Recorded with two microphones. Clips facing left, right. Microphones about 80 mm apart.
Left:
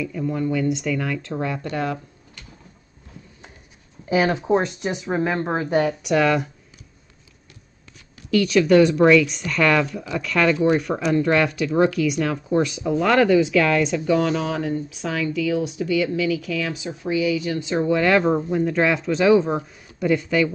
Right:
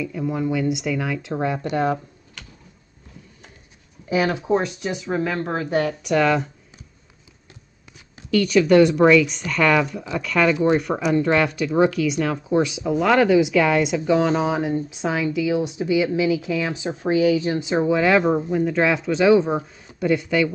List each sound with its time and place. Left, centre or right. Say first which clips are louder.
0.0 s speech: even; centre
1.3 s speech: right 3 dB; right
4.1 s a woman's voice: left 1 dB; left
6.0 s speech: even; centre
8.3 s speech: even; centre; by 16.9 s right
16.9 s speech: right 4 dB; right
17.6 s speech: right 2 dB; centre
17.8 s speech: even; centre